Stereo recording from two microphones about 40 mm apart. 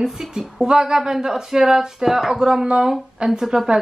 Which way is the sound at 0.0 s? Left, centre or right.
Centre.